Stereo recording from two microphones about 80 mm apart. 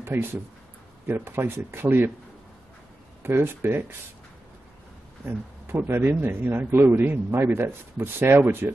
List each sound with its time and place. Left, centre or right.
0.0 s speech: right
3.2 s speech: right
5.2 s speech: right